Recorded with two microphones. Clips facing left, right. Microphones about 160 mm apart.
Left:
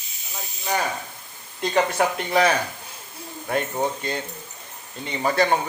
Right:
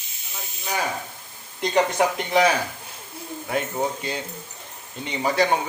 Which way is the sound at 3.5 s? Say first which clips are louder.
Left 1 dB; 5° right (ahead or behind).